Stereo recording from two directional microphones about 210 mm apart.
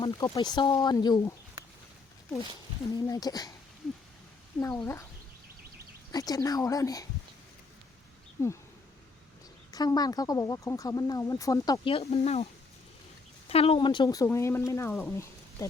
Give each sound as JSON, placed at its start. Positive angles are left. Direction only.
{"t": 0.0, "sound": "speech", "side_deg": 25}
{"t": 2.9, "sound": "speech", "side_deg": 15}
{"t": 4.6, "sound": "speech", "side_deg": 10}
{"t": 6.1, "sound": "speech", "side_deg": 20}
{"t": 9.7, "sound": "speech", "side_deg": 20}
{"t": 13.5, "sound": "speech", "side_deg": 30}
{"t": 15.1, "sound": "a sound", "side_deg": 15}